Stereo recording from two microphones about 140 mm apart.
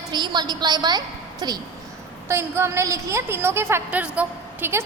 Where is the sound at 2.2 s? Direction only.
20° right (ahead or behind).